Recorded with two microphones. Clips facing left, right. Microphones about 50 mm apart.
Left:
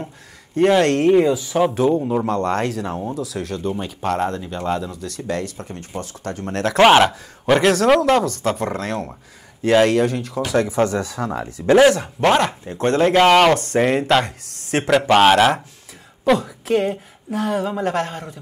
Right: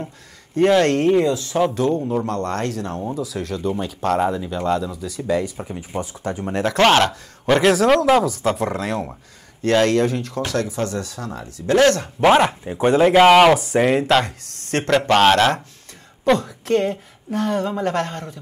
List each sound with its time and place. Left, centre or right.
0.6 s speech: centre
4.9 s speech: centre
6.8 s speech: centre
10.7 s speech: left
11.7 s speech: centre
12.2 s speech: centre